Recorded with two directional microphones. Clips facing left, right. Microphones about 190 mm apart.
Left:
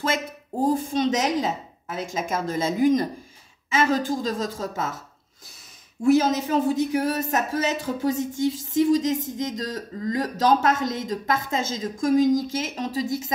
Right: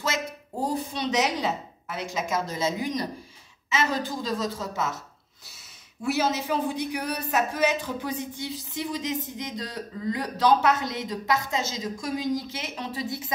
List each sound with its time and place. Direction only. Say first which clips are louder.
0.0 s speech: left 3 dB; 50° left (ahead or behind)
6.2 s speech: left 4 dB; 45° left (ahead or behind)